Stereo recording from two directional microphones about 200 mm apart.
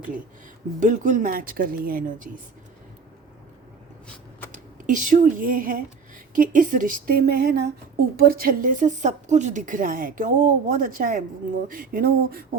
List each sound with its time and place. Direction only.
0.8 s speech: 40° right (ahead or behind)
4.5 s speech: 40° right (ahead or behind)